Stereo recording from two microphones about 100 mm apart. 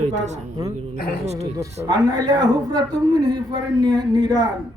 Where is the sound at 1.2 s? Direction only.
90° right.